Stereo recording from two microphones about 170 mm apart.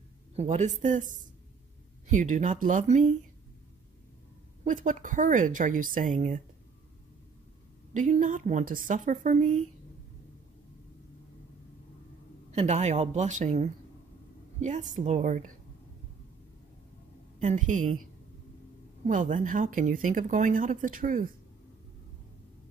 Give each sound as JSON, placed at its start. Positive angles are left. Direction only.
{"t": 0.4, "sound": "speech", "side_deg": -40}
{"t": 4.6, "sound": "speech", "side_deg": -50}
{"t": 7.9, "sound": "speech", "side_deg": -45}
{"t": 12.4, "sound": "speech", "side_deg": -40}
{"t": 17.4, "sound": "speech", "side_deg": -45}
{"t": 19.0, "sound": "speech", "side_deg": -50}